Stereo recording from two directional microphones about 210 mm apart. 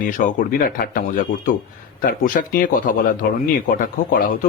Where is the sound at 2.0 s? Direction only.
40° left (ahead or behind).